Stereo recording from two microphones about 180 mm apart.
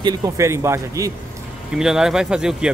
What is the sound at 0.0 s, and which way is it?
Speech, 20° right (ahead or behind).